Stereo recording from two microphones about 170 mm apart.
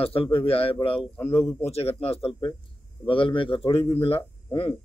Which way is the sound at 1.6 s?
35° left (ahead or behind).